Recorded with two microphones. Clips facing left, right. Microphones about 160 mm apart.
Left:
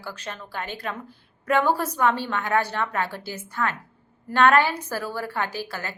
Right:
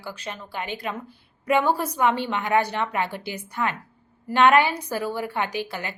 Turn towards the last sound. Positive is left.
turn(degrees=-15)  # may be behind; listen again after turning